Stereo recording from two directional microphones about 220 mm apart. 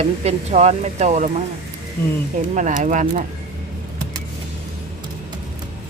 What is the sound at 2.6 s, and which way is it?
Speech, 35° right (ahead or behind).